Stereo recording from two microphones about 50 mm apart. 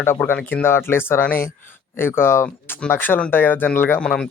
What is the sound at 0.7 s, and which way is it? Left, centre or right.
Speech, left.